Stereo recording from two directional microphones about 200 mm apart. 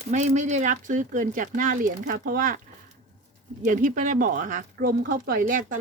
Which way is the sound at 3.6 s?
40° right (ahead or behind).